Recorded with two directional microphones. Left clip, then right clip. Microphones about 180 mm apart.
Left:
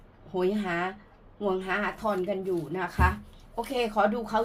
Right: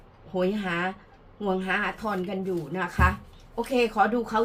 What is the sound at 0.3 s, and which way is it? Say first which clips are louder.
A woman's voice: right 1 dB; 35° left (ahead or behind).